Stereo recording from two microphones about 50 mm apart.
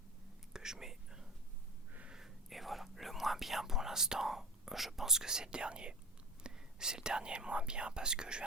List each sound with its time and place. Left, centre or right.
0.5 s whispering: centre
2.5 s whispering: centre; by 6.0 s right
6.4 s speech: centre